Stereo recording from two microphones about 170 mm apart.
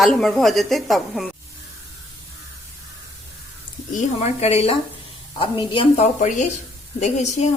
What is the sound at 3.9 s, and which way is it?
Speech, 40° left (ahead or behind).